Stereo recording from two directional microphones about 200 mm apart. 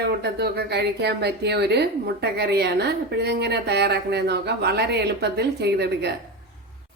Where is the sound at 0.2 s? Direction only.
55° right (ahead or behind).